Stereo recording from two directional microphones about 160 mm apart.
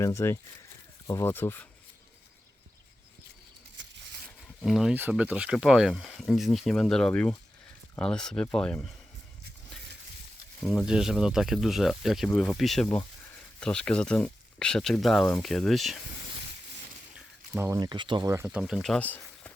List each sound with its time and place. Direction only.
0.0 s speech: 15° left (ahead or behind)
4.6 s speech: centre (ahead or behind)
10.8 s speech: 5° right (ahead or behind)
17.7 s speech: 25° right (ahead or behind)
18.3 s speech: 15° right (ahead or behind)
18.6 s speech: centre (ahead or behind)